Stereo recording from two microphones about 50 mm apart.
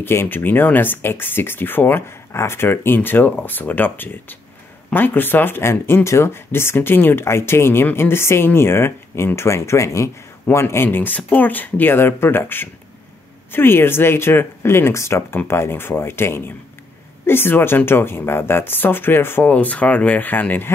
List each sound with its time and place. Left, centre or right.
0.0 s speech: left
2.3 s speech: left
10.5 s speech: left
19.5 s speech: left